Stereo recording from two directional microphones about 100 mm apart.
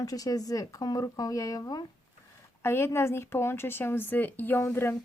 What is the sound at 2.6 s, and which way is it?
Speech, 25° left (ahead or behind).